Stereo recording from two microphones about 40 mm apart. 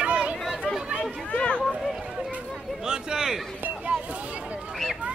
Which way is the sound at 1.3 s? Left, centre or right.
Left.